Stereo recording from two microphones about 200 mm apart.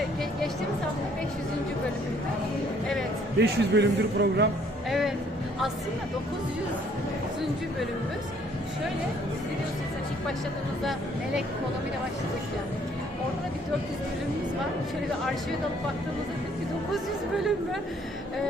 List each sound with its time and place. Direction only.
3.3 s a man's voice: 55° right (ahead or behind)
4.9 s music: centre (ahead or behind)